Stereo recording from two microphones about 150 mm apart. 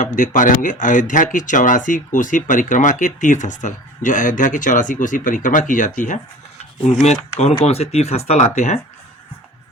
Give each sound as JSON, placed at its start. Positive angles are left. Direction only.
{"t": 0.0, "sound": "speech", "side_deg": 60}
{"t": 6.7, "sound": "speech", "side_deg": 45}